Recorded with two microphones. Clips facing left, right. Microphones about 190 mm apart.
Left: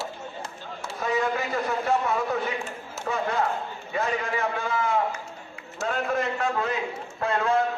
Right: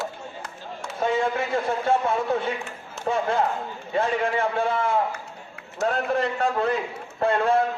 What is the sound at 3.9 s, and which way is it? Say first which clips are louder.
Speech: right 4 dB; 30° right (ahead or behind).